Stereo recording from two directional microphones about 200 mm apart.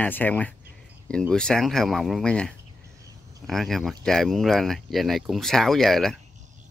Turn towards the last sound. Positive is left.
turn(degrees=0)  # may be behind; listen again after turning